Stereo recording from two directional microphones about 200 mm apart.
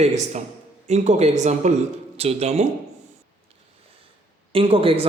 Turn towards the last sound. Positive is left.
turn(degrees=-30)  # may be behind; listen again after turning